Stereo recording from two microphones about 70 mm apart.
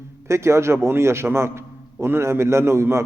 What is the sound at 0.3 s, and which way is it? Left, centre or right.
A man's voice, right.